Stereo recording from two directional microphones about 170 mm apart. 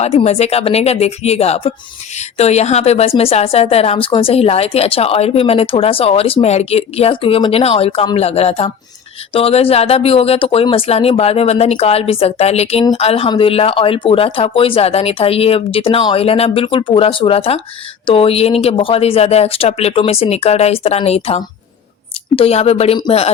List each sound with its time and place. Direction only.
0.0 s a woman's voice: 35° left (ahead or behind)